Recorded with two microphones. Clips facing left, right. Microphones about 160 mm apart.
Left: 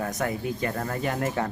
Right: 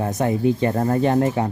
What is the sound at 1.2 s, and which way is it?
Speech, 20° right (ahead or behind).